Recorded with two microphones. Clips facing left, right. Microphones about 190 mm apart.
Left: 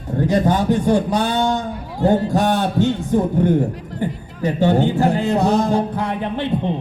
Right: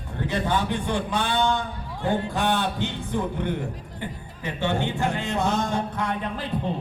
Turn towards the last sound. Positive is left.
turn(degrees=30)  # may be behind; listen again after turning